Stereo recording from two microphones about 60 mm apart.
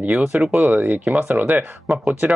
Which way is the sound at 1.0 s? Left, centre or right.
Right.